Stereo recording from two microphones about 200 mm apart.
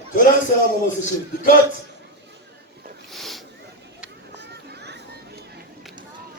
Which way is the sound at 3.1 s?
Centre (ahead or behind).